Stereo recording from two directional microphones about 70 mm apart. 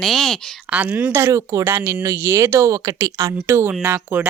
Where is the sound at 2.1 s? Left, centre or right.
Right.